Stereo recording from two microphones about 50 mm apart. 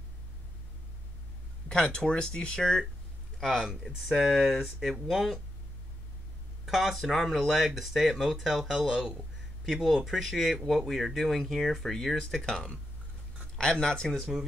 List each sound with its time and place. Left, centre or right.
1.7 s speech: centre
3.3 s speech: centre
6.6 s speech: centre